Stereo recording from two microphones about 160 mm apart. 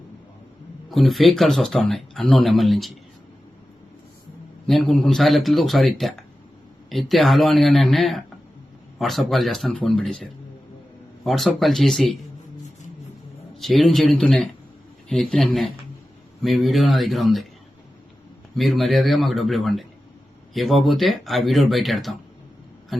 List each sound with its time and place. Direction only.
0.9 s speech: centre (ahead or behind)
4.6 s speech: 5° left (ahead or behind)
11.2 s speech: centre (ahead or behind)
13.6 s speech: centre (ahead or behind)
18.5 s speech: centre (ahead or behind)